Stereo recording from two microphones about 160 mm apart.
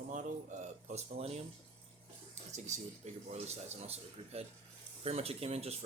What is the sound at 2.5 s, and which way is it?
Speech, 45° right (ahead or behind).